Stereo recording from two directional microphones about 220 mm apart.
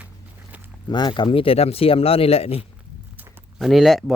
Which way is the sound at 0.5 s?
5° right (ahead or behind).